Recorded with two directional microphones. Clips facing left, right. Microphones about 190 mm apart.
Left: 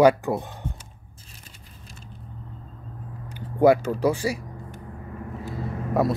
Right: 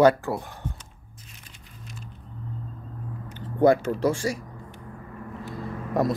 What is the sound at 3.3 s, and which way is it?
Speech, 10° left (ahead or behind).